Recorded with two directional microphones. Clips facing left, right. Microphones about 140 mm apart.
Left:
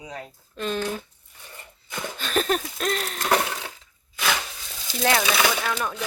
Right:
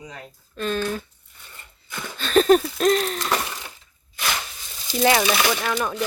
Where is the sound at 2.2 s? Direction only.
5° left (ahead or behind).